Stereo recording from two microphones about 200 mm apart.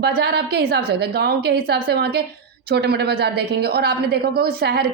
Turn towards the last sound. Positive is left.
turn(degrees=-55)  # may be behind; listen again after turning